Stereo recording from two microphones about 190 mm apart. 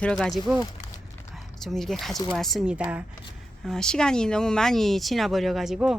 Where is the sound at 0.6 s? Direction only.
20° left (ahead or behind).